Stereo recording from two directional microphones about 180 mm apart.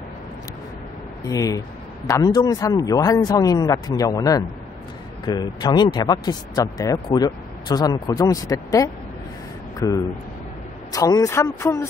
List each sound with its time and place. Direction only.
1.2 s speech: 20° left (ahead or behind)